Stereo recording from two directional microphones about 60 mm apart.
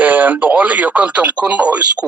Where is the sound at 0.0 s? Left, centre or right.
Right.